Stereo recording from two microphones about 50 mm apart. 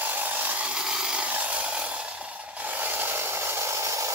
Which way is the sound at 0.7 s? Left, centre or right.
Centre.